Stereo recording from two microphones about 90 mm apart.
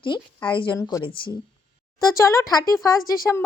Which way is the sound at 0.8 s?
40° left (ahead or behind).